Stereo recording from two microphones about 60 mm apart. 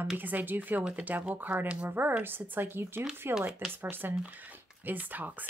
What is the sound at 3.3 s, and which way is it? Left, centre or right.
Speech, centre.